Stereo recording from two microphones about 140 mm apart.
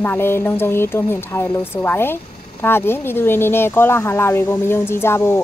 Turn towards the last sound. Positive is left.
turn(degrees=15)  # may be behind; listen again after turning